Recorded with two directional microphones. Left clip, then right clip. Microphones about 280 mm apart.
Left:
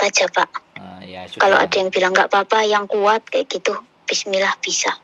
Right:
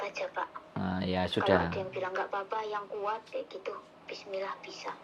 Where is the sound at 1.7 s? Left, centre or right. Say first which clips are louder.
Left 18 dB; left.